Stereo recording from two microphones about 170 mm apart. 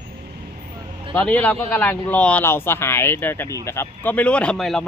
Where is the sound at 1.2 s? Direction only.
10° left (ahead or behind).